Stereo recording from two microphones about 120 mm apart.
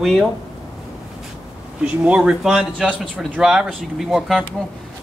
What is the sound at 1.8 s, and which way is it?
Speech, 10° right (ahead or behind).